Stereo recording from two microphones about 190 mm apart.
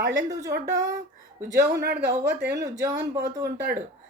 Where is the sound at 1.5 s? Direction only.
60° right (ahead or behind).